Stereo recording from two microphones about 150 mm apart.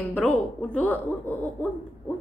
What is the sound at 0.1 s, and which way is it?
A woman's voice, 10° left (ahead or behind).